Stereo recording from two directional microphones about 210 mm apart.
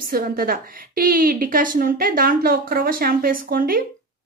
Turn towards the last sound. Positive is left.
turn(degrees=-45)  # may be behind; listen again after turning